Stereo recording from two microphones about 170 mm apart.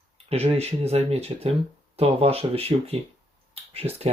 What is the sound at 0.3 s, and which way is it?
Speech, 35° right (ahead or behind).